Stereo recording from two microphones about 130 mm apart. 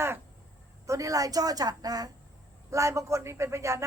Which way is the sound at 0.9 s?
25° right (ahead or behind).